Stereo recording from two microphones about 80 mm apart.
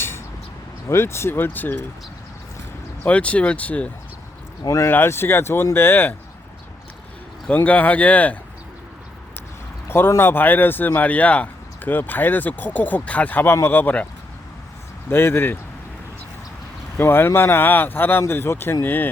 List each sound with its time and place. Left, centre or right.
0.9 s speech: left
3.0 s speech: centre
4.6 s speech: left
4.9 s speech: left
7.5 s speech: centre
9.9 s speech: left
15.1 s speech: left
17.0 s speech: left